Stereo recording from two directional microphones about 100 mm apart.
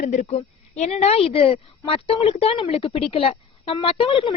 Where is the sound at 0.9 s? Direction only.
90° left.